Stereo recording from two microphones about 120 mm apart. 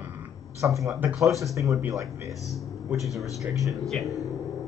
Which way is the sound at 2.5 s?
Centre (ahead or behind).